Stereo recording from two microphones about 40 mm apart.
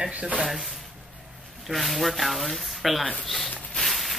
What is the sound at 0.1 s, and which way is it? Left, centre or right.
Speech, right.